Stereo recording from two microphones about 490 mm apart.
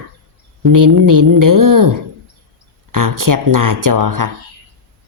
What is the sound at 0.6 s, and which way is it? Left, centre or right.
Speech, right.